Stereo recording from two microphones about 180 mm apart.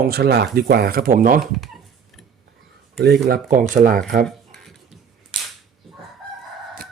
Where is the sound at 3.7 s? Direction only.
50° right (ahead or behind).